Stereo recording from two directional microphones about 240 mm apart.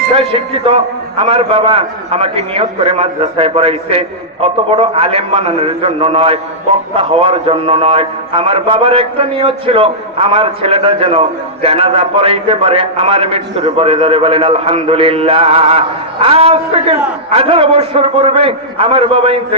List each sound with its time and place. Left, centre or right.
0.1 s a man's voice: right